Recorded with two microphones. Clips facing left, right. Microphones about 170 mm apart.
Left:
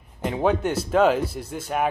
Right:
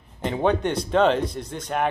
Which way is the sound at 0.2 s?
5° left (ahead or behind).